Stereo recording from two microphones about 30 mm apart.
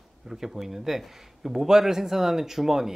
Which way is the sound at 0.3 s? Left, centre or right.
Centre.